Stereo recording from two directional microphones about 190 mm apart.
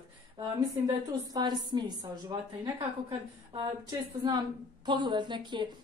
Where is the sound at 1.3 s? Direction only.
20° right (ahead or behind).